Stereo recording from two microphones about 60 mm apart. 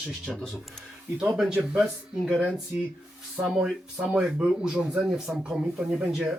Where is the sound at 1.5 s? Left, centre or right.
Centre.